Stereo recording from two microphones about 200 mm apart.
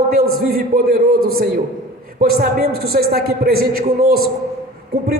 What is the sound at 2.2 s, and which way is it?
A man's voice, 50° right (ahead or behind).